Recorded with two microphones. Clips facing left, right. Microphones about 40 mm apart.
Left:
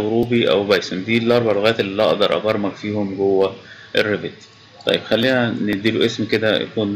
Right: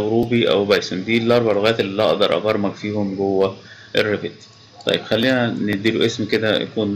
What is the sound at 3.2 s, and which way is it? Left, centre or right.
Speech, centre.